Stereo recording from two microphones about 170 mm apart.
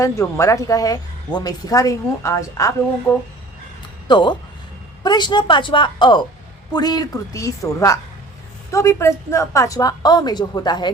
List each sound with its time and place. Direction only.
0.0 s a woman's voice: 15° left (ahead or behind)
4.1 s a woman's voice: 25° left (ahead or behind)